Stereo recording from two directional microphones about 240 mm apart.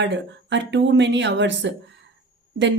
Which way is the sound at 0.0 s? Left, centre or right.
Right.